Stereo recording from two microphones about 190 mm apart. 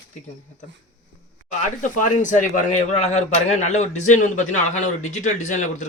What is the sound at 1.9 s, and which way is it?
A man's voice, 40° left (ahead or behind).